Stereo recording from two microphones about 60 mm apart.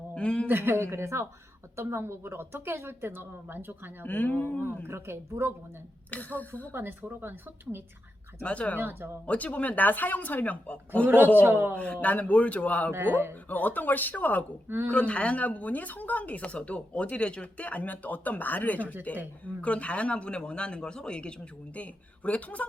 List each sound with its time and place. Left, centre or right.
0.1 s a man's voice: centre
0.4 s speech: right
4.0 s speech: left
4.9 s speech: right
6.1 s speech: left
6.7 s speech: right
8.4 s speech: left
8.8 s speech: right
9.2 s speech: left
11.0 s speech: right
11.7 s speech: centre
12.9 s speech: right
13.5 s speech: left
14.8 s speech: centre